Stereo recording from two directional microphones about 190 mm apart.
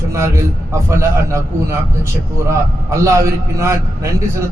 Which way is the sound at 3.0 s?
15° right (ahead or behind).